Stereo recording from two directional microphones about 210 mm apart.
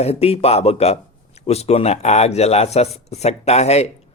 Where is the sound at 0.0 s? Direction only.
30° left (ahead or behind).